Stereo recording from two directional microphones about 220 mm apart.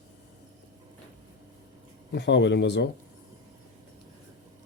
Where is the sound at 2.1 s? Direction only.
50° left (ahead or behind).